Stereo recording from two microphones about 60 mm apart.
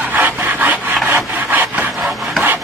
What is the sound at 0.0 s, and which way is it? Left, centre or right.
Rub, right.